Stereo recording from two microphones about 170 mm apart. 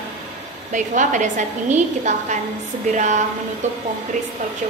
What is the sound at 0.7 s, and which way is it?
A woman's voice, 50° right (ahead or behind).